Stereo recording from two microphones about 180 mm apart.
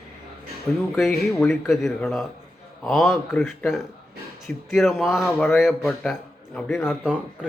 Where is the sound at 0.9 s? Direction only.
Centre (ahead or behind).